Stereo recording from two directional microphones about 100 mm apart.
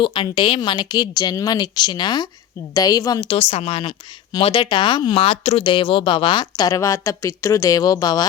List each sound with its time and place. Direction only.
0.0 s speech: 55° left (ahead or behind)
2.7 s a woman's voice: 35° left (ahead or behind)
3.2 s speech: 60° left (ahead or behind)
4.4 s speech: 55° left (ahead or behind)
5.2 s speech: 85° left; by 8.3 s 45° left (ahead or behind)